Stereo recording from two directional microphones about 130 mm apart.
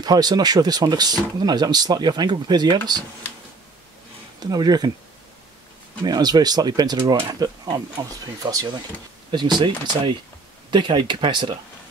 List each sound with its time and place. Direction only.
0.0 s speech: 30° right (ahead or behind)
4.4 s speech: 30° right (ahead or behind)
6.0 s speech: 30° right (ahead or behind)